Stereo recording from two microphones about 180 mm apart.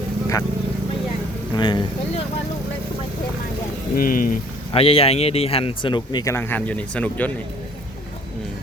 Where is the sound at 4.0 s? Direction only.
50° left (ahead or behind).